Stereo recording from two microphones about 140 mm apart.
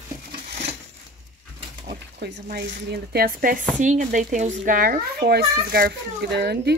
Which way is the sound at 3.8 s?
65° right (ahead or behind).